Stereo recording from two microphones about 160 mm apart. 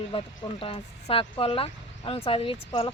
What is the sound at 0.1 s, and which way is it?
Speech, 35° left (ahead or behind).